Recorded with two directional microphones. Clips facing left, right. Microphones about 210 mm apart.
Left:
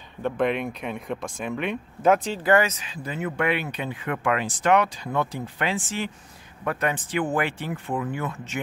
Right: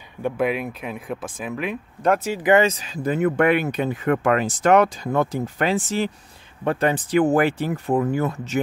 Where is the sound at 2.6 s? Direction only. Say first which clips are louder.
Right 7 dB; 35° right (ahead or behind).